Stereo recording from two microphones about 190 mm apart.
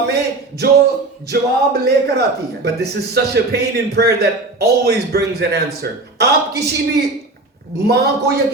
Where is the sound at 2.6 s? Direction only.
60° right (ahead or behind).